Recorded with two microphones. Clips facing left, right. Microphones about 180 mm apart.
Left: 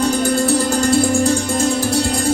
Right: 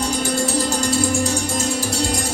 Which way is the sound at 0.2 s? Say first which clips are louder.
Left 5 dB; 55° left (ahead or behind).